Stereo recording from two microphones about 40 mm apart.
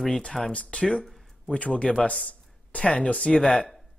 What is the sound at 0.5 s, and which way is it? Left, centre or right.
Speech, left.